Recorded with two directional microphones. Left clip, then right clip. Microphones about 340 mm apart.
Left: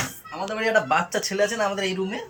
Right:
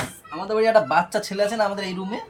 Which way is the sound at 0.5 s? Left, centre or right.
Centre.